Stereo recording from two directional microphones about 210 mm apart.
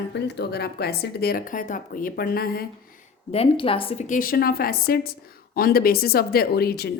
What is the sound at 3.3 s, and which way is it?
A woman's voice, 25° left (ahead or behind).